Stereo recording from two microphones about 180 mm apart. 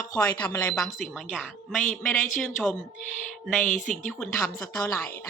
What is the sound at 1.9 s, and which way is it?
Speech, 10° left (ahead or behind).